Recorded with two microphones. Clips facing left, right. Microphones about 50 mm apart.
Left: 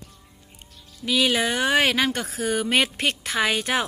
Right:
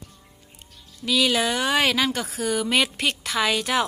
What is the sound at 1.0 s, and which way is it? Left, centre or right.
Speech, left.